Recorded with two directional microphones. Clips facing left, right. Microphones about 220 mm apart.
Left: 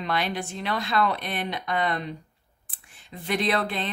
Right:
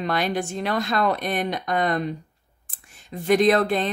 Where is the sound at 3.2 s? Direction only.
45° right (ahead or behind).